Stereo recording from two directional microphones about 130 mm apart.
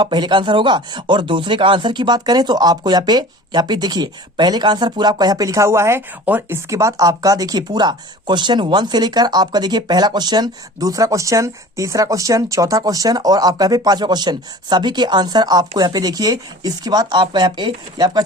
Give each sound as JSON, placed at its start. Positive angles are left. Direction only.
{"t": 0.0, "sound": "speech", "side_deg": -35}